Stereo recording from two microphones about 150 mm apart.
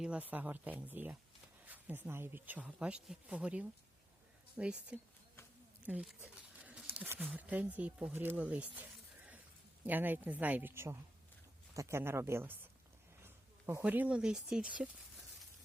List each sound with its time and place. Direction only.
0.0 s speech: 10° right (ahead or behind)
8.4 s snake: 10° right (ahead or behind)
9.8 s speech: 10° right (ahead or behind)